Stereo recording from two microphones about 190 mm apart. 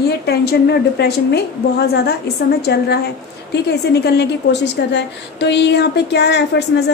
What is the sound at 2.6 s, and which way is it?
A woman's voice, 60° left (ahead or behind).